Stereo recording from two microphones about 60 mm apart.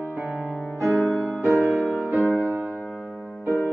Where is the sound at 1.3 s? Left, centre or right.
Centre.